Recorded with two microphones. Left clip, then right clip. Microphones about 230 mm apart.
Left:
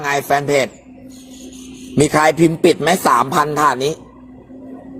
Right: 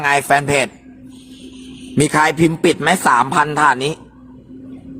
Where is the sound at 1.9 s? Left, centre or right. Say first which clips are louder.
Left 1 dB; centre.